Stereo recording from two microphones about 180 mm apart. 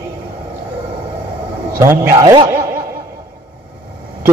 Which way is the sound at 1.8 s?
15° right (ahead or behind).